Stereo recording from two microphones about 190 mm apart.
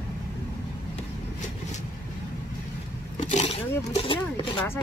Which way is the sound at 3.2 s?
35° left (ahead or behind).